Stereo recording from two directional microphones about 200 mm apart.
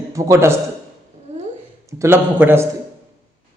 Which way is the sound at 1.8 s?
15° right (ahead or behind).